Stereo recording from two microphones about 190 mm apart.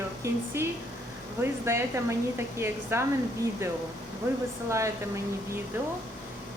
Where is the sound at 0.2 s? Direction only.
15° right (ahead or behind).